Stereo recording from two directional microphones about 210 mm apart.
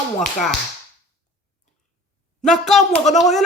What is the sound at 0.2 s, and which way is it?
Speech, centre (ahead or behind).